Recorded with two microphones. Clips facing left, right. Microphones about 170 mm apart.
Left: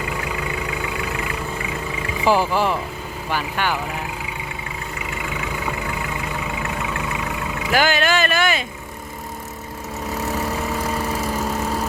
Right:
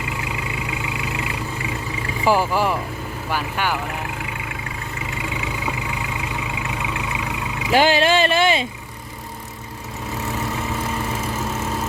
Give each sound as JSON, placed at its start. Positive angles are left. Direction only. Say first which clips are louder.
{"t": 0.2, "sound": "vehicle", "louder": "left 2 dB", "side_deg": -20}
{"t": 2.2, "sound": "speech", "louder": "even", "side_deg": -10}
{"t": 6.6, "sound": "vehicle", "louder": "left 1 dB", "side_deg": -20}
{"t": 7.7, "sound": "speech", "louder": "right 3 dB", "side_deg": -30}
{"t": 10.2, "sound": "vehicle", "louder": "left 2 dB", "side_deg": 40}